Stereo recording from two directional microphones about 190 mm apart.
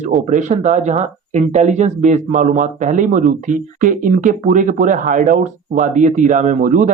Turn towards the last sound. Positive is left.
turn(degrees=-45)  # may be behind; listen again after turning